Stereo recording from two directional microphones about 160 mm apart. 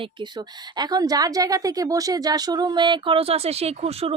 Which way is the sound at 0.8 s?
25° right (ahead or behind).